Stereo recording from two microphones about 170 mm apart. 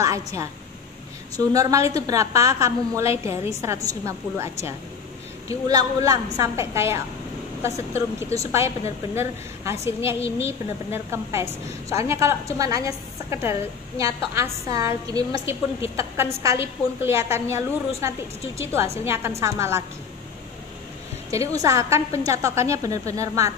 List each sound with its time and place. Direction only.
0.0 s a woman's voice: 20° right (ahead or behind)
8.4 s a woman's voice: 15° right (ahead or behind)
21.3 s a woman's voice: 20° right (ahead or behind)